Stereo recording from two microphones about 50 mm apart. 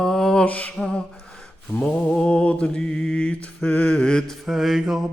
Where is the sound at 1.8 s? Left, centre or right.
Left.